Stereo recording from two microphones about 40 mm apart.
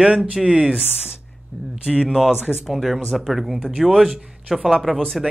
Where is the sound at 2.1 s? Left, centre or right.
Centre.